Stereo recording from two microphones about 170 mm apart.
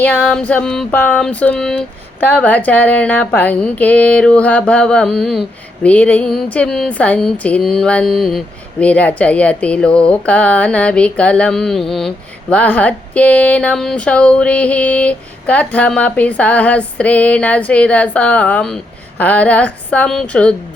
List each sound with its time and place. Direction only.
0.0 s music: 5° left (ahead or behind)
0.9 s speech: 10° left (ahead or behind)